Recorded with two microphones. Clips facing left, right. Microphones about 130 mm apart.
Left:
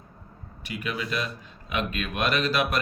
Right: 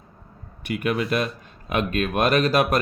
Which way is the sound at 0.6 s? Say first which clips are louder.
Right 8 dB; 55° right (ahead or behind).